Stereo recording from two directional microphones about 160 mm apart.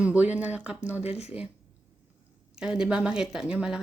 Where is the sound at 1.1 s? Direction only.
40° left (ahead or behind).